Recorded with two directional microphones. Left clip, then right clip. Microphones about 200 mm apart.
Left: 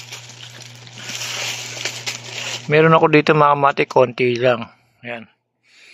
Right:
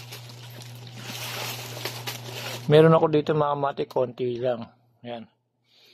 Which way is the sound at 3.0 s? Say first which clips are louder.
Left 9 dB; 10° left (ahead or behind).